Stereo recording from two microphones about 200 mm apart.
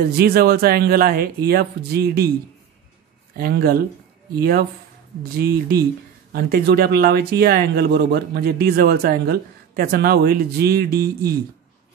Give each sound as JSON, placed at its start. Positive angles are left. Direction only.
{"t": 0.0, "sound": "speech", "side_deg": -50}
{"t": 3.3, "sound": "speech", "side_deg": -50}